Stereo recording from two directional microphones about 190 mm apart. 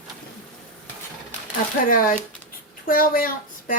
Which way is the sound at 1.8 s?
45° left (ahead or behind).